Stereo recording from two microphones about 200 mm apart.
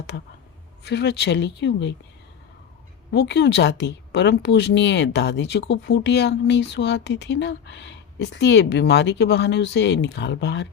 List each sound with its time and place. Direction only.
0.9 s a woman's voice: 55° left (ahead or behind)
3.1 s a woman's voice: 55° left (ahead or behind)